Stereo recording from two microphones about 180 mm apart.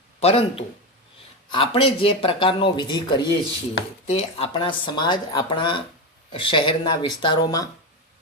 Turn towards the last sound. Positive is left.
turn(degrees=25)  # may be behind; listen again after turning